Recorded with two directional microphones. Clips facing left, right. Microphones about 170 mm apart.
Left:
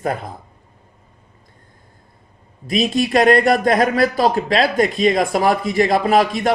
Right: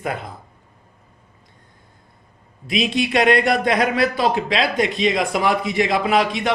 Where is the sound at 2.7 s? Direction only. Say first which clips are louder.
Left 3 dB; 45° left (ahead or behind).